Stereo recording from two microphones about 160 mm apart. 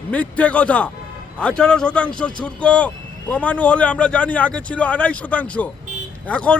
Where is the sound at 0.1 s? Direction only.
10° left (ahead or behind).